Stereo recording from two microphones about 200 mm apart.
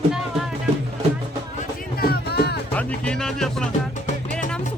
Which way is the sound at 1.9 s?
50° left (ahead or behind).